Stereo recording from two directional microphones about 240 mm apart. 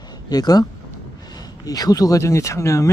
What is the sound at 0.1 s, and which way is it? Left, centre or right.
Speech, centre.